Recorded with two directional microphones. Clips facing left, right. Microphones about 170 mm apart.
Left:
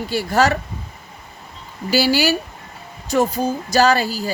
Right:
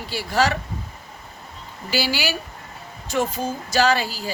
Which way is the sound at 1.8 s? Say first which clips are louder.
Left 7 dB; 40° left (ahead or behind).